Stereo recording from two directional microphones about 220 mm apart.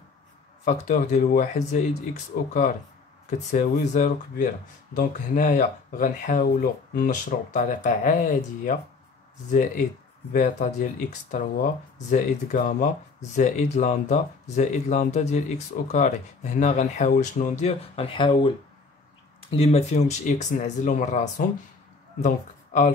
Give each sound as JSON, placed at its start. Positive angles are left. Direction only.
{"t": 0.7, "sound": "speech", "side_deg": 35}
{"t": 3.3, "sound": "speech", "side_deg": 35}
{"t": 12.1, "sound": "speech", "side_deg": 35}
{"t": 19.5, "sound": "speech", "side_deg": 30}